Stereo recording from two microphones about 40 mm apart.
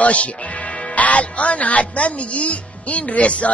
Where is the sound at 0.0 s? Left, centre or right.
Left.